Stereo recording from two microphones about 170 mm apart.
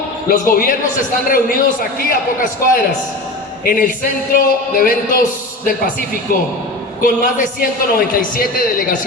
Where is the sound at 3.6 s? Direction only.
55° left (ahead or behind).